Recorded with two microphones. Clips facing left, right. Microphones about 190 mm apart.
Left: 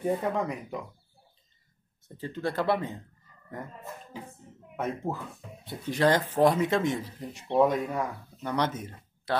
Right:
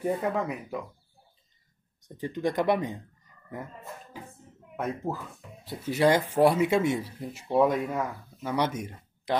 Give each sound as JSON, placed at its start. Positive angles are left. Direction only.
{"t": 0.0, "sound": "speech", "side_deg": -5}
{"t": 2.0, "sound": "speech", "side_deg": -15}
{"t": 4.7, "sound": "speech", "side_deg": 0}